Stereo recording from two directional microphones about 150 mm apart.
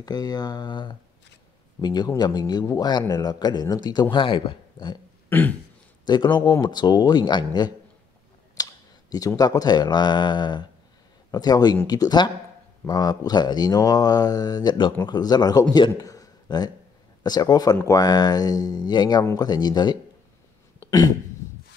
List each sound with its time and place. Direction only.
0.0 s speech: 25° left (ahead or behind)
5.3 s throat clearing: 10° left (ahead or behind)
6.0 s speech: 30° left (ahead or behind)
20.8 s a sound: 25° left (ahead or behind)